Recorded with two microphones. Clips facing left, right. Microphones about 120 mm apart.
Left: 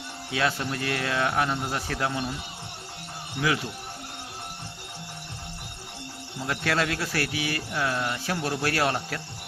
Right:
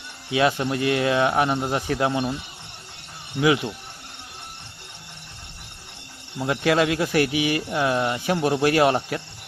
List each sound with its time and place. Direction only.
0.3 s a man's voice: 15° right (ahead or behind)
6.4 s a man's voice: 15° right (ahead or behind)